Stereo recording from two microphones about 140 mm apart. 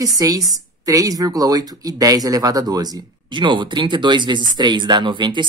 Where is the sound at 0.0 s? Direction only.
25° right (ahead or behind).